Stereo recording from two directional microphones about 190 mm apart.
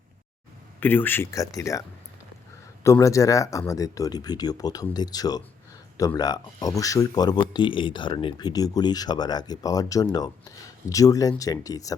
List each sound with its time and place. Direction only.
0.8 s speech: 10° left (ahead or behind)
2.8 s speech: 15° left (ahead or behind)